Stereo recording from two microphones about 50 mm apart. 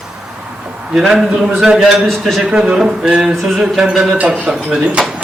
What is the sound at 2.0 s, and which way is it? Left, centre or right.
Speech, centre.